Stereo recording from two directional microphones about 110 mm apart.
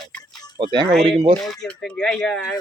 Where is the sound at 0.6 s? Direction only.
45° right (ahead or behind).